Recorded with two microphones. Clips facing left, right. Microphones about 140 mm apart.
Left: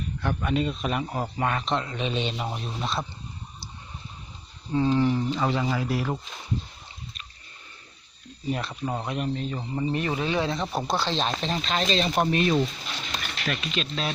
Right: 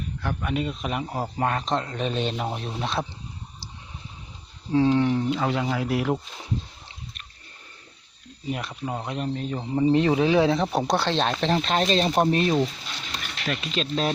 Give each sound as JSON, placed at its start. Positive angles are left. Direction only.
{"t": 0.2, "sound": "speech", "side_deg": -5}
{"t": 1.0, "sound": "a man's voice", "side_deg": -30}
{"t": 4.7, "sound": "speech", "side_deg": -75}
{"t": 6.8, "sound": "a sound", "side_deg": -60}
{"t": 8.4, "sound": "speech", "side_deg": -15}
{"t": 9.0, "sound": "speech", "side_deg": -30}
{"t": 9.4, "sound": "speech", "side_deg": -10}
{"t": 9.9, "sound": "speech", "side_deg": -90}
{"t": 13.7, "sound": "speech", "side_deg": -40}